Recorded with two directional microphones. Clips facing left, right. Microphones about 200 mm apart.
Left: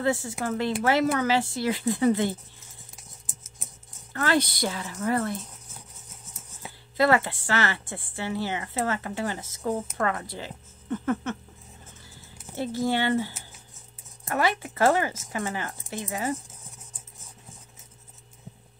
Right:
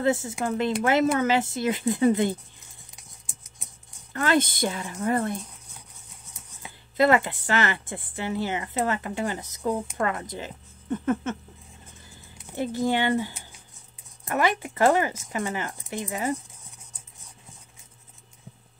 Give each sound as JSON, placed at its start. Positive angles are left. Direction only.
{"t": 0.0, "sound": "speech", "side_deg": -20}
{"t": 3.0, "sound": "a sound", "side_deg": 5}
{"t": 4.1, "sound": "speech", "side_deg": -20}
{"t": 7.0, "sound": "speech", "side_deg": -20}
{"t": 12.5, "sound": "speech", "side_deg": -15}